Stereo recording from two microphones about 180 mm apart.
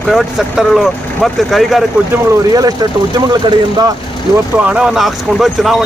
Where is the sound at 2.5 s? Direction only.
20° right (ahead or behind).